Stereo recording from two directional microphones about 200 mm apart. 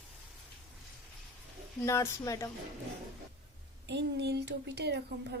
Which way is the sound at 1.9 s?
15° left (ahead or behind).